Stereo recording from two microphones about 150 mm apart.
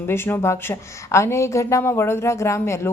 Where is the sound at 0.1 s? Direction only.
15° left (ahead or behind).